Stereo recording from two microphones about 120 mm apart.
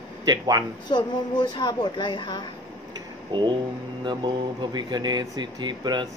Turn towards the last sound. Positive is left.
turn(degrees=-40)  # may be behind; listen again after turning